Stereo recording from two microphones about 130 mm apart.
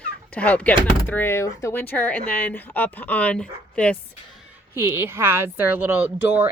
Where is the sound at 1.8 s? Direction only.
10° left (ahead or behind).